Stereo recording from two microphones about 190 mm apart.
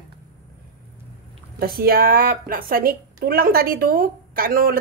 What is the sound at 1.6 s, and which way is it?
A woman's voice, 50° right (ahead or behind).